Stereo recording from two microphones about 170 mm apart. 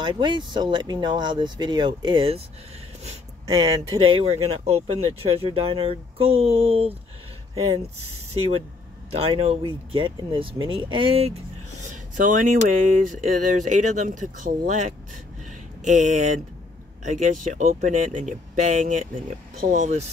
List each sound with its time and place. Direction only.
0.0 s speech: 30° right (ahead or behind)
3.4 s speech: 20° right (ahead or behind)
4.0 s speech: 30° right (ahead or behind)
8.3 s speech: 35° right (ahead or behind)
11.8 s speech: 50° right (ahead or behind)